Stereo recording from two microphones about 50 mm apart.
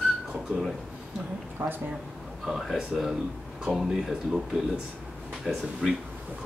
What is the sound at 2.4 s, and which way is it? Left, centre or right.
Speech, centre.